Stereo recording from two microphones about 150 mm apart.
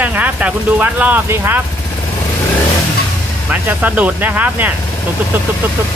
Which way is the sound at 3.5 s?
10° right (ahead or behind).